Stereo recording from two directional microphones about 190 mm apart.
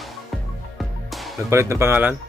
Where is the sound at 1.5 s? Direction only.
15° right (ahead or behind).